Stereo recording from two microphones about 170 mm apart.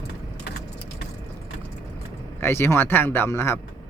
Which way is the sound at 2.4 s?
15° left (ahead or behind).